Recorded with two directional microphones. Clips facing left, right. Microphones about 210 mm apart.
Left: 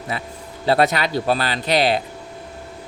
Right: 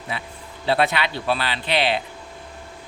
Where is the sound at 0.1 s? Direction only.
40° left (ahead or behind).